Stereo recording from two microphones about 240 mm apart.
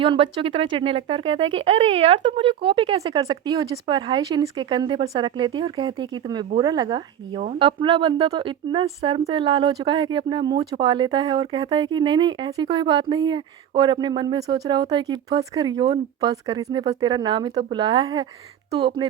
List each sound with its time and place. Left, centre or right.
0.0 s speech: right